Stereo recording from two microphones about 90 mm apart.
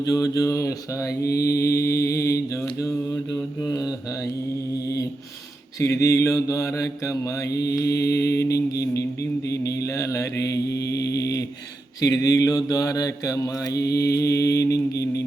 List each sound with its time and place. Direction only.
0.0 s mantra: 45° left (ahead or behind)
3.6 s mantra: 45° left (ahead or behind)
5.8 s mantra: 35° left (ahead or behind)